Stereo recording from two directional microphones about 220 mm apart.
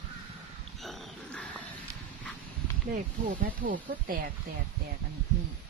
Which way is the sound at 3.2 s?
40° right (ahead or behind).